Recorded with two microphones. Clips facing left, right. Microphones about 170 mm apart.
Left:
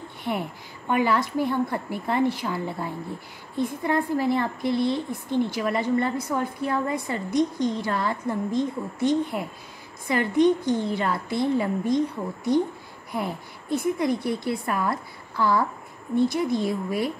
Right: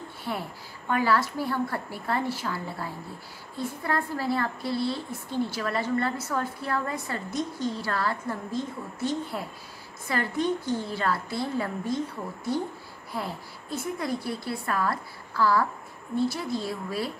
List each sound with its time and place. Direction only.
0.2 s a woman's voice: 20° left (ahead or behind)
13.1 s a woman's voice: 20° left (ahead or behind)